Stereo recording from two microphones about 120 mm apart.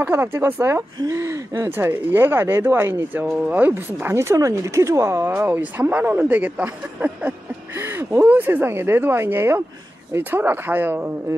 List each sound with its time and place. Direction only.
0.0 s speech: 20° right (ahead or behind)